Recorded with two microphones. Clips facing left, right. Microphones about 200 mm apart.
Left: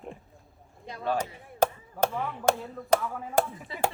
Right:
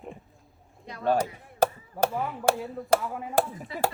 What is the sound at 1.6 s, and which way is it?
Chop, 10° right (ahead or behind).